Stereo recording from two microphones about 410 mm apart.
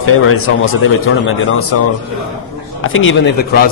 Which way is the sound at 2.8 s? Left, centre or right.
Left.